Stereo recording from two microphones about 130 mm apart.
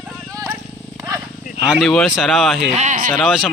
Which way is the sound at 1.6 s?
5° right (ahead or behind).